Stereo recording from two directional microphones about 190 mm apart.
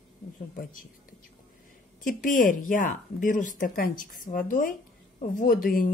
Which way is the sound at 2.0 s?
45° left (ahead or behind).